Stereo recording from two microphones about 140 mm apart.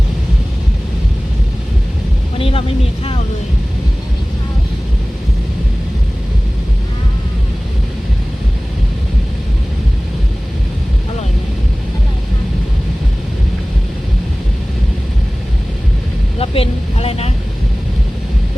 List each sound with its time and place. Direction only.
2.4 s vehicle: 40° left (ahead or behind)
16.4 s vehicle: 45° left (ahead or behind)